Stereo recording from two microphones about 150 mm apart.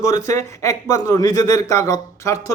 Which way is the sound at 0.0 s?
20° left (ahead or behind).